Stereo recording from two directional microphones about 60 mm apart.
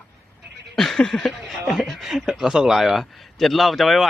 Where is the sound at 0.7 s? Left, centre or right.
Centre.